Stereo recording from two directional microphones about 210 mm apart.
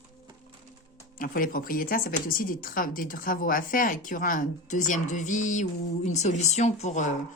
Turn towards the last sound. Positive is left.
turn(degrees=35)  # may be behind; listen again after turning